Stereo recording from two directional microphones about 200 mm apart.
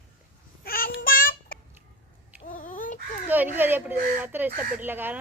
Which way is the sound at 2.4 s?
40° left (ahead or behind).